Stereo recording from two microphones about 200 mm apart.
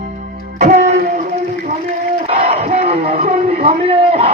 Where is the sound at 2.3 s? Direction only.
35° right (ahead or behind).